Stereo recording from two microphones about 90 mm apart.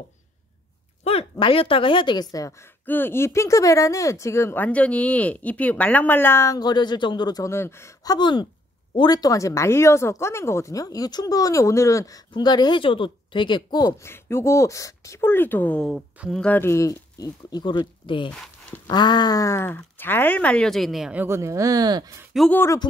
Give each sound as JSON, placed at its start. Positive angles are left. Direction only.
{"t": 1.4, "sound": "speech", "side_deg": 90}
{"t": 2.9, "sound": "speech", "side_deg": 25}
{"t": 4.6, "sound": "speech", "side_deg": 15}
{"t": 6.6, "sound": "speech", "side_deg": 55}
{"t": 7.4, "sound": "speech", "side_deg": 30}
{"t": 8.0, "sound": "speech", "side_deg": 45}
{"t": 12.4, "sound": "speech", "side_deg": 50}
{"t": 14.0, "sound": "speech", "side_deg": 30}
{"t": 16.1, "sound": "speech", "side_deg": -15}
{"t": 16.5, "sound": "speech", "side_deg": 30}
{"t": 18.9, "sound": "speech", "side_deg": 55}
{"t": 21.3, "sound": "speech", "side_deg": -35}
{"t": 22.3, "sound": "speech", "side_deg": -5}